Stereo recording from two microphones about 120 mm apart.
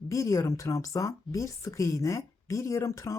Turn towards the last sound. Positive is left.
turn(degrees=25)  # may be behind; listen again after turning